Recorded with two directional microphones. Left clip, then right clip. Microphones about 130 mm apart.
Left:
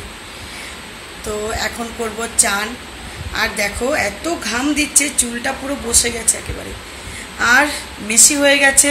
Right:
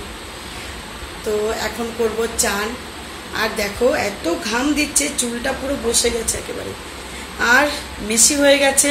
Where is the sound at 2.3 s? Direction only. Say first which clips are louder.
Left 2 dB; 25° left (ahead or behind).